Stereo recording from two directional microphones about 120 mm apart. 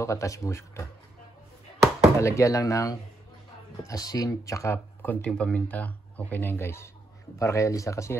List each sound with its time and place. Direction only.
0.0 s speech: 25° left (ahead or behind)
2.1 s speech: 25° left (ahead or behind)
5.0 s speech: 10° left (ahead or behind)